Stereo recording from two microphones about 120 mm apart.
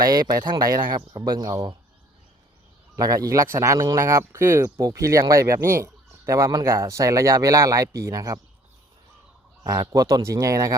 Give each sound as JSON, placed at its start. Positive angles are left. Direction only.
{"t": 0.0, "sound": "speech", "side_deg": -30}
{"t": 2.9, "sound": "speech", "side_deg": -30}
{"t": 9.8, "sound": "speech", "side_deg": -30}